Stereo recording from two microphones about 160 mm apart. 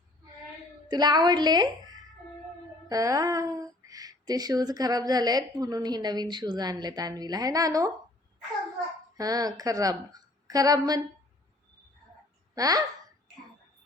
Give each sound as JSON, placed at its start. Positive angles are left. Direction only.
{"t": 0.9, "sound": "a woman's voice", "side_deg": -25}
{"t": 9.1, "sound": "a woman's voice", "side_deg": -25}
{"t": 12.5, "sound": "a sound", "side_deg": -25}